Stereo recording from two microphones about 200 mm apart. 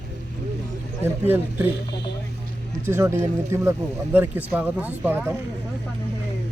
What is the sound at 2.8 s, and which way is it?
Speech, 10° right (ahead or behind).